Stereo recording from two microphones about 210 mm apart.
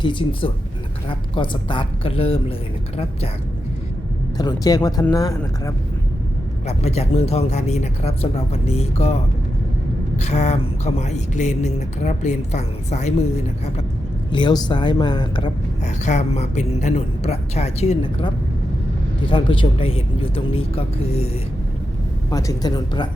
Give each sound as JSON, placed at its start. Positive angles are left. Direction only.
{"t": 0.0, "sound": "speech", "side_deg": 25}
{"t": 4.4, "sound": "speech", "side_deg": 20}
{"t": 6.7, "sound": "speech", "side_deg": 30}
{"t": 14.3, "sound": "speech", "side_deg": 20}
{"t": 16.0, "sound": "speech", "side_deg": 35}
{"t": 19.3, "sound": "speech", "side_deg": 25}
{"t": 22.3, "sound": "speech", "side_deg": 15}